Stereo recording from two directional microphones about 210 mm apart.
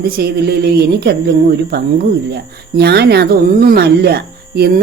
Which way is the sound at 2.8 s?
50° right (ahead or behind).